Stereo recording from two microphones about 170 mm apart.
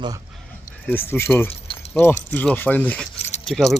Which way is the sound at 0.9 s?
15° left (ahead or behind).